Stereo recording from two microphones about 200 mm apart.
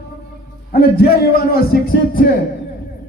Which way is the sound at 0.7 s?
50° left (ahead or behind).